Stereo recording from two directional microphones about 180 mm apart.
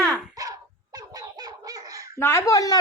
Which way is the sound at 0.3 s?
20° right (ahead or behind).